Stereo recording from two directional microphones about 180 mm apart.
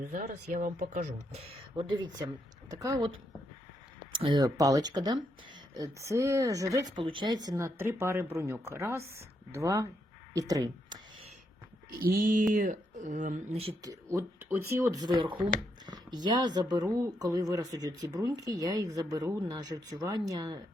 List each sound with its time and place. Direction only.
0.0 s speech: 45° right (ahead or behind)
1.5 s speech: 30° right (ahead or behind)
11.9 s speech: 55° right (ahead or behind)
13.8 s speech: 20° right (ahead or behind)